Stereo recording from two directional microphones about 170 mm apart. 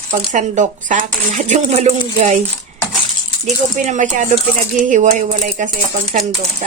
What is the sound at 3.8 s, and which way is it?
Speech, 45° right (ahead or behind).